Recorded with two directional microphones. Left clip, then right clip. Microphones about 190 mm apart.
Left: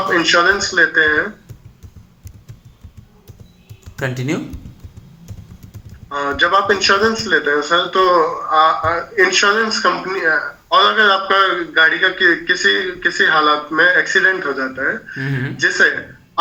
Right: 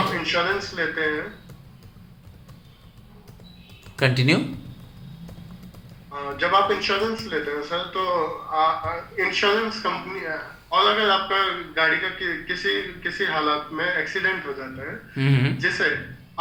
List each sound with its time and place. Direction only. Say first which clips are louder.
0.1 s a man's voice: left 10 dB; 55° left (ahead or behind)
3.9 s speech: right 1 dB; 20° right (ahead or behind)
6.1 s a man's voice: left 8 dB; 60° left (ahead or behind)
15.2 s a man's voice: left 1 dB; 25° right (ahead or behind)